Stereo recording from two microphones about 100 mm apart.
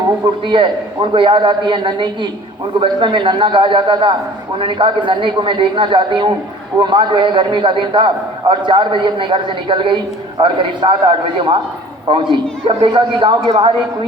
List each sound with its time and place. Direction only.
0.3 s a man's voice: 55° right (ahead or behind)
13.5 s a man's voice: 65° right (ahead or behind)